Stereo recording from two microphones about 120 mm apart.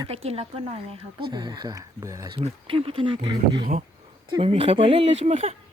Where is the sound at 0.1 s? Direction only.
60° right (ahead or behind).